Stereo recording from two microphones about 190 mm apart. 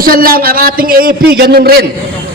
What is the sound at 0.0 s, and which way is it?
A man's voice, 50° right (ahead or behind).